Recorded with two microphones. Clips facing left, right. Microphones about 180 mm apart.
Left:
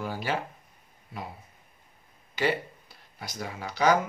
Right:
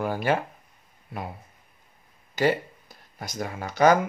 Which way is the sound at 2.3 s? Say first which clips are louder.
Right 4 dB; 45° right (ahead or behind).